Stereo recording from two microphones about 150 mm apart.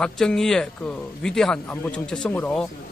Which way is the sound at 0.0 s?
5° left (ahead or behind).